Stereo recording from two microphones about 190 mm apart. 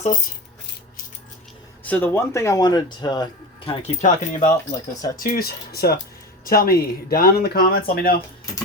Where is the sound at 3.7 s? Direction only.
35° left (ahead or behind).